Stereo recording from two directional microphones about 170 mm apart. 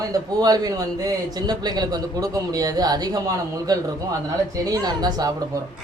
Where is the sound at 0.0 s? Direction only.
20° right (ahead or behind).